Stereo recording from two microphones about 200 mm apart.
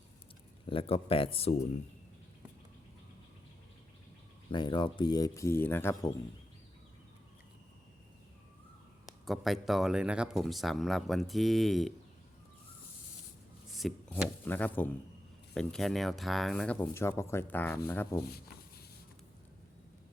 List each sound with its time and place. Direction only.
0.7 s speech: 30° left (ahead or behind)
4.4 s speech: 25° left (ahead or behind)
9.0 s speech: centre (ahead or behind)
13.7 s speech: centre (ahead or behind)